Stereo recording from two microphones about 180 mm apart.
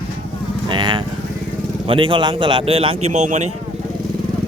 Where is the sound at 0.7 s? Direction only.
25° right (ahead or behind).